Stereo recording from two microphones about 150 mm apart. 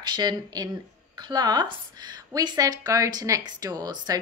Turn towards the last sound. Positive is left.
turn(degrees=-25)  # may be behind; listen again after turning